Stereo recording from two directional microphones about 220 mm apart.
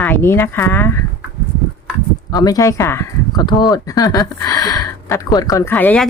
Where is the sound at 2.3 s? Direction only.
15° left (ahead or behind).